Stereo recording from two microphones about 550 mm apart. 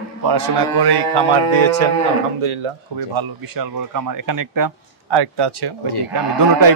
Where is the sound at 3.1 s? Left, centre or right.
Right.